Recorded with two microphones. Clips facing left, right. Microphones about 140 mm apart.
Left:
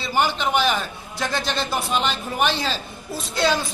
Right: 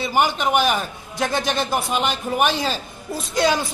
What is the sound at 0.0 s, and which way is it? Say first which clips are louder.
A man's voice: right 2 dB; 10° right (ahead or behind).